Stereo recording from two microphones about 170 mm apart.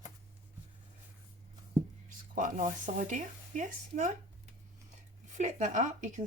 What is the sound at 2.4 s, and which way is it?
A woman's voice, 45° right (ahead or behind).